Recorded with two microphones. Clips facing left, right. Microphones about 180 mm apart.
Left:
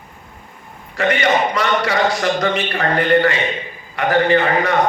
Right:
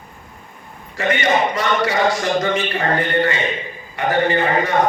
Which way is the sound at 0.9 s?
65° left (ahead or behind).